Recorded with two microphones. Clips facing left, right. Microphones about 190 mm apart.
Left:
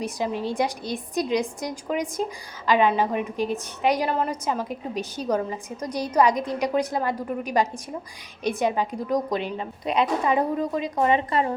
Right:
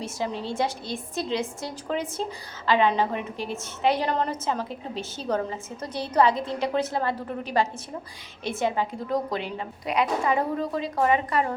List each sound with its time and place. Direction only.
0.0 s a woman's voice: 15° left (ahead or behind)